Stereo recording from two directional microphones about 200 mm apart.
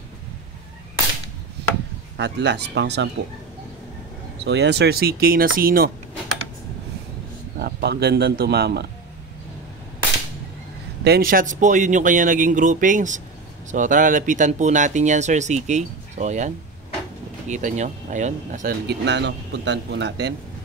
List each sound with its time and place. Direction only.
2.1 s speech: 60° right (ahead or behind)
4.5 s speech: 60° right (ahead or behind)
7.5 s a man's voice: 55° right (ahead or behind)
11.1 s speech: 45° right (ahead or behind)
18.9 s speech: 60° right (ahead or behind)